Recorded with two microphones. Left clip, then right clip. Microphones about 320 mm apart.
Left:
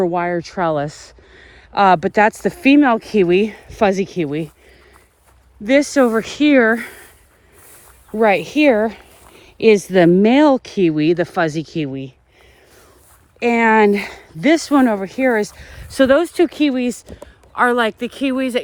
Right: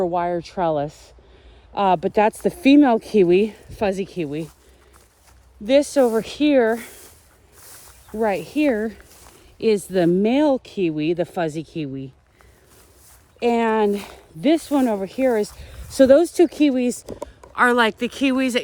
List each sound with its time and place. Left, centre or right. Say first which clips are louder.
0.0 s speech: left 3 dB; left
3.7 s speech: left 7 dB; left
4.2 s speech: left 5 dB; left
5.6 s speech: left 2 dB; left
8.2 s speech: left 7 dB; left
9.9 s speech: left 6 dB; centre
13.4 s speech: left 6 dB; left
17.5 s speech: left 1 dB; centre